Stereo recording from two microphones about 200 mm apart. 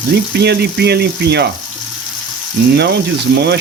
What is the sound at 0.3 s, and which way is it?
Speech, 55° right (ahead or behind).